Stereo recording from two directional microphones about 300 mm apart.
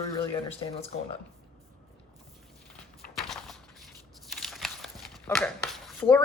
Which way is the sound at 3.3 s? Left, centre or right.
Centre.